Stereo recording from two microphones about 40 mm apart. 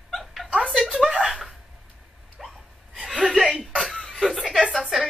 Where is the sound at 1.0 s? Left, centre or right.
Centre.